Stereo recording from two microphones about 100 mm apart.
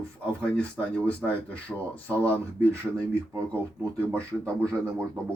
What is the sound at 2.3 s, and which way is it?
Speech, 25° right (ahead or behind).